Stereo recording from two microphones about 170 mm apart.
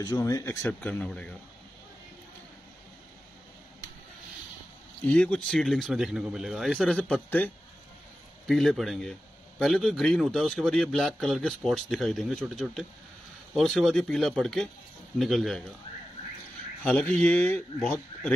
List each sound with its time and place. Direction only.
0.0 s speech: 20° left (ahead or behind); by 1.3 s 5° left (ahead or behind)
5.0 s a man's voice: 10° left (ahead or behind)
16.8 s speech: 5° left (ahead or behind)